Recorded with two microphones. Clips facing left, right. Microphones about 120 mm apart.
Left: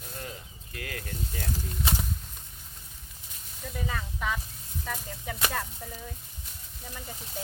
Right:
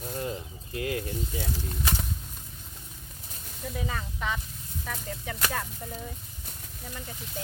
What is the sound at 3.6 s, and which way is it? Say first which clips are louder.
Speech: right 1 dB; 5° right (ahead or behind).